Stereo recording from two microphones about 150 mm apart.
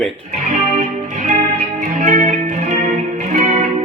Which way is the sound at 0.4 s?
55° right (ahead or behind).